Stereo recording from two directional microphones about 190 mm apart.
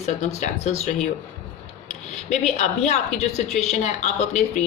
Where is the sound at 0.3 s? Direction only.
35° left (ahead or behind).